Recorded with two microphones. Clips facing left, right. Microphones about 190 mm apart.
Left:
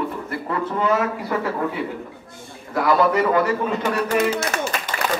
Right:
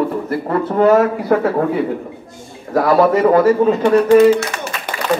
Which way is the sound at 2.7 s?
40° right (ahead or behind).